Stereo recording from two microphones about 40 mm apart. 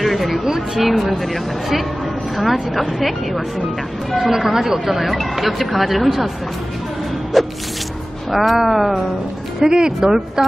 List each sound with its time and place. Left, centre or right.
0.0 s a sound: centre
0.5 s speech: centre
7.3 s speech: centre
9.7 s speech: centre